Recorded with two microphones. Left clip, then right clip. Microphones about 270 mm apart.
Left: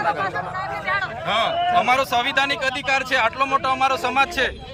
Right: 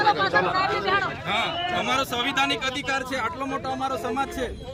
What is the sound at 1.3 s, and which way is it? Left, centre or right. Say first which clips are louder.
A man's voice: left 9 dB; centre.